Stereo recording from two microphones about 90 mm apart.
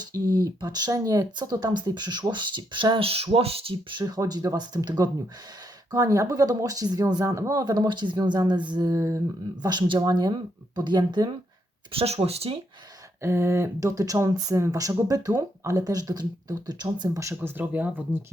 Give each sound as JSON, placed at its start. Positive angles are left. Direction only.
{"t": 0.1, "sound": "speech", "side_deg": -40}
{"t": 4.0, "sound": "speech", "side_deg": -45}
{"t": 7.3, "sound": "a sound", "side_deg": -35}
{"t": 7.6, "sound": "speech", "side_deg": -50}
{"t": 8.9, "sound": "a sound", "side_deg": -35}
{"t": 9.6, "sound": "speech", "side_deg": -60}
{"t": 11.9, "sound": "speech", "side_deg": -90}
{"t": 13.2, "sound": "speech", "side_deg": -30}
{"t": 13.7, "sound": "speech", "side_deg": -40}
{"t": 17.3, "sound": "speech", "side_deg": -20}